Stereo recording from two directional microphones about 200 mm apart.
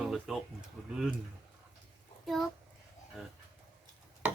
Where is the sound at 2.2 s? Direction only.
Centre (ahead or behind).